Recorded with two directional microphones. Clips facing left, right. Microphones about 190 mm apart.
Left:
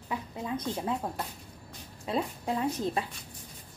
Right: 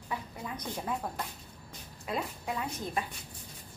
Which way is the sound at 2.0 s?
30° left (ahead or behind).